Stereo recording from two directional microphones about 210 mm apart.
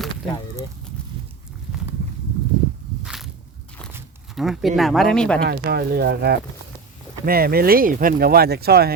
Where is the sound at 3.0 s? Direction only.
Centre (ahead or behind).